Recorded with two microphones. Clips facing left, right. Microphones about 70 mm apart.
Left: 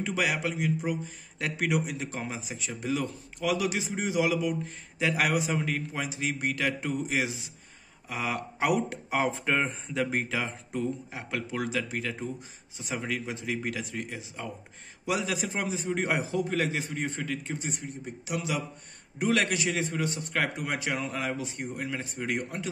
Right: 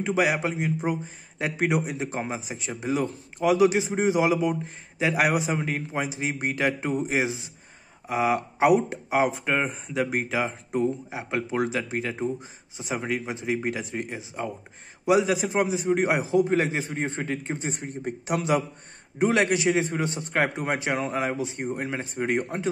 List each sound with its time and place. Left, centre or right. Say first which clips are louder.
0.0 s a man's voice: right 5 dB; right; by 10.2 s centre
10.2 s a man's voice: right 5 dB; centre; by 18.6 s right
19.1 s a man's voice: right 5 dB; right